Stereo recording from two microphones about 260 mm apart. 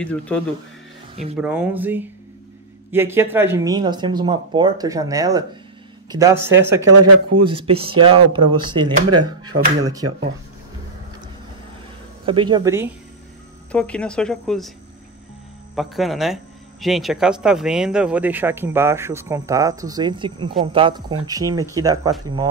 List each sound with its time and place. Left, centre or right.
0.0 s speech: centre
6.9 s speech: right
7.4 s speech: right
10.0 s speech: right
12.3 s speech: centre
13.7 s speech: centre
15.7 s speech: centre